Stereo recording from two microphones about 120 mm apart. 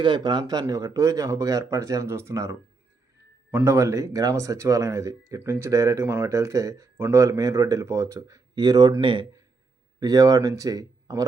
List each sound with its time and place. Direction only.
0.0 s speech: 40° right (ahead or behind)
10.0 s speech: 30° right (ahead or behind)